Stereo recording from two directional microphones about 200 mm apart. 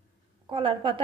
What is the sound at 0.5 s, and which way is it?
Speech, 25° right (ahead or behind).